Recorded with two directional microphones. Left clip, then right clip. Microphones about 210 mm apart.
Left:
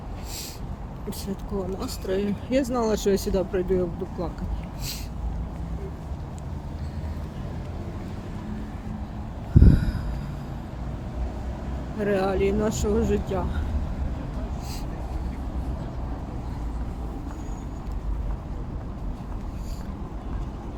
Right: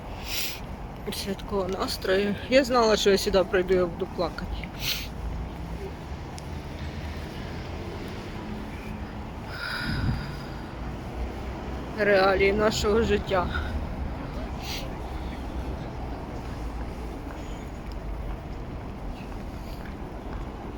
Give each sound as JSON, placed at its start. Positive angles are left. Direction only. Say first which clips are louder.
{"t": 1.2, "sound": "speech", "louder": "right 3 dB", "side_deg": 15}
{"t": 9.6, "sound": "a sound", "louder": "left 5 dB", "side_deg": 15}
{"t": 11.9, "sound": "speech", "louder": "right 4 dB", "side_deg": 15}